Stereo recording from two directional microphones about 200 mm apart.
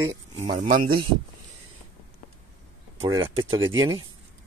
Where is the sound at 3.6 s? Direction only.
20° right (ahead or behind).